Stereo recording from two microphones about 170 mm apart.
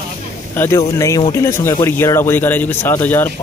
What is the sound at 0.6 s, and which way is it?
Speech, 20° left (ahead or behind).